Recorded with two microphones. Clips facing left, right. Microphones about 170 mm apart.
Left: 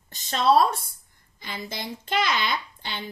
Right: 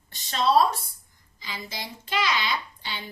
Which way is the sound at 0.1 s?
50° left (ahead or behind).